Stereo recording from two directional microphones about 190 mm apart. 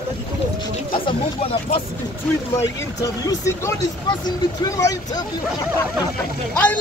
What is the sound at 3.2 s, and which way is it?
Speech, 15° left (ahead or behind).